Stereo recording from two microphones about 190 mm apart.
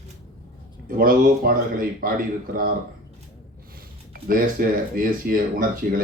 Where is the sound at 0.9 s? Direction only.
50° right (ahead or behind).